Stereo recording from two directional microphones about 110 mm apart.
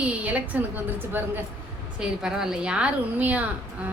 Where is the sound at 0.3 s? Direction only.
15° right (ahead or behind).